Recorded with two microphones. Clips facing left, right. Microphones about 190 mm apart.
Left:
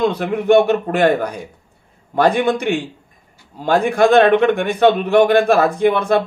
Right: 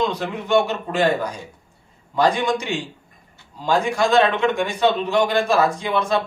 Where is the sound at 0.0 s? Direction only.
55° left (ahead or behind).